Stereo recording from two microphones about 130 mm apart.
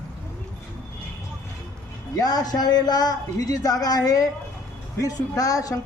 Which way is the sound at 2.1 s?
30° left (ahead or behind).